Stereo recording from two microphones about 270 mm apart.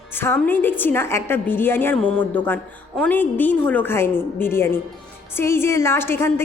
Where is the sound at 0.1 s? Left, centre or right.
Centre.